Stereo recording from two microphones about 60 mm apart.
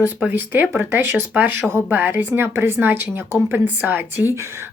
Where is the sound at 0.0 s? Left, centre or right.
Right.